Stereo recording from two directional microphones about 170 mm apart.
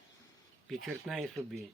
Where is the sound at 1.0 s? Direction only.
Centre (ahead or behind).